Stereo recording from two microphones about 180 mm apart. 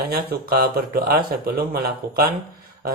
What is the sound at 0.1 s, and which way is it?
Speech, 55° right (ahead or behind).